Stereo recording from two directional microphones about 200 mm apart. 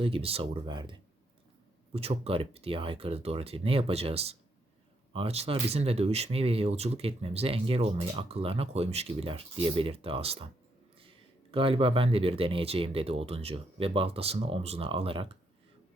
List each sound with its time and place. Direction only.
0.0 s speech: 30° right (ahead or behind)
11.5 s speech: 25° right (ahead or behind)